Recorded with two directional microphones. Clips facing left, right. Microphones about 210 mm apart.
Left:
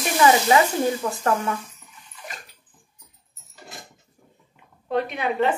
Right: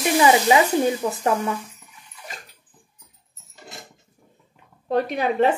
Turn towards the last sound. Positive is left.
turn(degrees=-35)  # may be behind; listen again after turning